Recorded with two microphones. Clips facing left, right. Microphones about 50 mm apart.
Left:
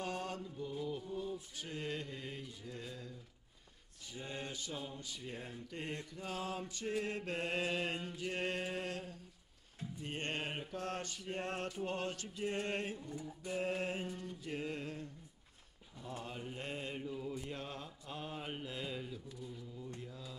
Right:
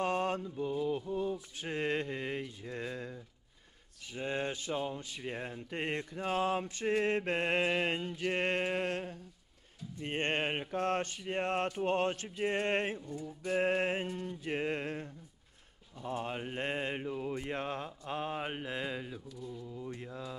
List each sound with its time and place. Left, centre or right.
0.0 s mantra: right
1.1 s a sound: right
4.1 s mantra: right
13.0 s a sound: left
13.4 s mantra: right
20.0 s mantra: right